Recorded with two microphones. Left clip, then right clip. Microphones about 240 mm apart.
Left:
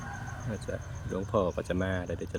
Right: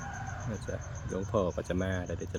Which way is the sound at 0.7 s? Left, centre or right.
Centre.